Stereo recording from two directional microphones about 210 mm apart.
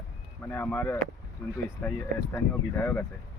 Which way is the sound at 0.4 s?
10° left (ahead or behind).